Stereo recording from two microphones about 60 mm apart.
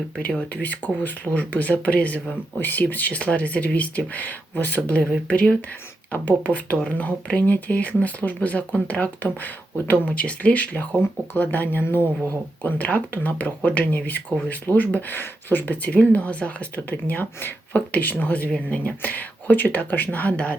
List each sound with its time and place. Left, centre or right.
0.2 s speech: left
12.6 s speech: left